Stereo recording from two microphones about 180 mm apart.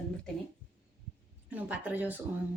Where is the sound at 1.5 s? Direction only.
10° right (ahead or behind).